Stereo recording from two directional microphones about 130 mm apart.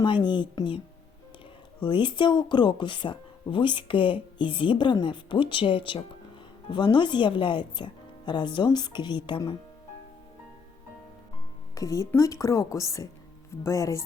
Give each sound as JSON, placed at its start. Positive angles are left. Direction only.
{"t": 0.0, "sound": "speech", "side_deg": 35}
{"t": 1.8, "sound": "speech", "side_deg": 40}
{"t": 11.7, "sound": "speech", "side_deg": 25}